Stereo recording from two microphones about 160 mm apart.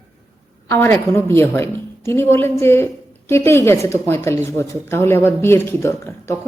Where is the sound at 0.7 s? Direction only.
15° left (ahead or behind).